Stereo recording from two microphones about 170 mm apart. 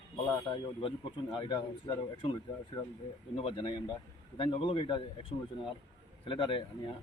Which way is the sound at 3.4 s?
25° left (ahead or behind).